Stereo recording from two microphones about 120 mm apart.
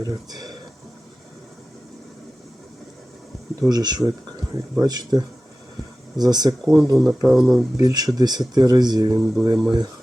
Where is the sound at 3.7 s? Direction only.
35° right (ahead or behind).